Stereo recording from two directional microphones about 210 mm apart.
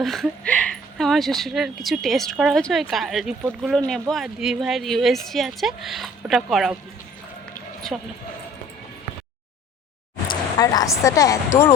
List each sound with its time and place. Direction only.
0.0 s speech: centre (ahead or behind)
7.9 s speech: centre (ahead or behind)
10.2 s speech: 15° left (ahead or behind)